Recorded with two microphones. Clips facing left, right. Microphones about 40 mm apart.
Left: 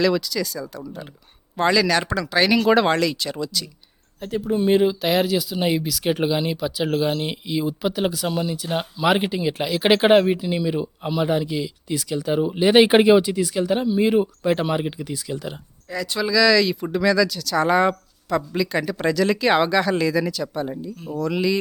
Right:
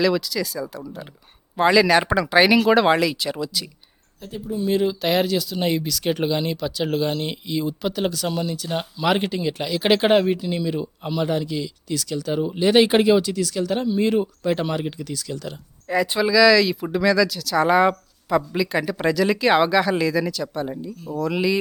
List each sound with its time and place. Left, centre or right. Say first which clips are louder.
0.0 s speech: even; centre
2.6 s speech: right 1 dB; centre
4.2 s speech: left 6 dB; left
4.9 s speech: left 1 dB; centre
15.9 s speech: right 5 dB; right
16.2 s speech: right 1 dB; centre